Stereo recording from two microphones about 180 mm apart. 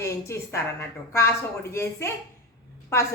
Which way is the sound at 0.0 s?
15° left (ahead or behind).